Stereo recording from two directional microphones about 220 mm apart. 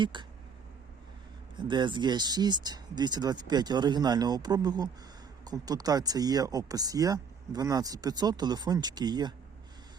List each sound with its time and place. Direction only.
0.0 s speech: 20° right (ahead or behind)
1.5 s speech: 20° right (ahead or behind)